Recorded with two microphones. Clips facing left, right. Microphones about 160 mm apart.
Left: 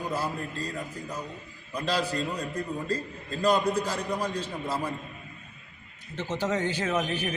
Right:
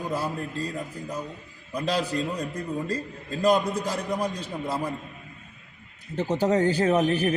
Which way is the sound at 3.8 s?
15° right (ahead or behind).